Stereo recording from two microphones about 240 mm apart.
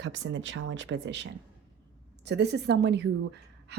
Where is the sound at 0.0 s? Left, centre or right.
Right.